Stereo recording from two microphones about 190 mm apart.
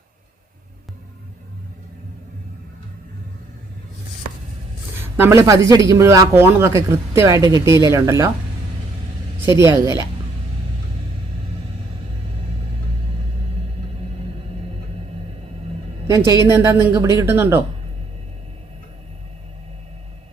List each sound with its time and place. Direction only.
5.2 s speech: 15° right (ahead or behind)
9.5 s speech: 15° right (ahead or behind)
16.0 s speech: 15° right (ahead or behind)